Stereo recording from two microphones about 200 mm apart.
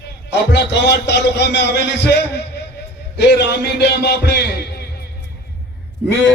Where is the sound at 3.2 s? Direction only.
55° left (ahead or behind).